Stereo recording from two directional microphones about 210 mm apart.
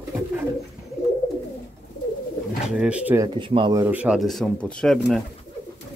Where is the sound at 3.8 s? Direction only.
5° right (ahead or behind).